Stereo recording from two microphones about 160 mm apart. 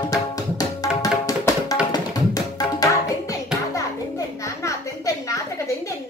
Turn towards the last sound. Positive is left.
turn(degrees=20)  # may be behind; listen again after turning